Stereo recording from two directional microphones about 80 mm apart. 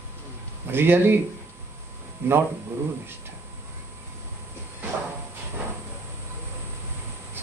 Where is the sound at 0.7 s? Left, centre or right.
Right.